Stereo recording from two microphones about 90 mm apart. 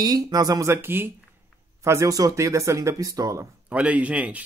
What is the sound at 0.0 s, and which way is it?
Speech, 45° right (ahead or behind).